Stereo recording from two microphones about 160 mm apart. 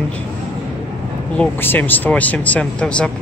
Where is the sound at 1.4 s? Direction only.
10° left (ahead or behind).